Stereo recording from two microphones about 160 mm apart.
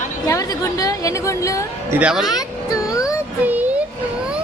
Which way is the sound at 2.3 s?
20° left (ahead or behind).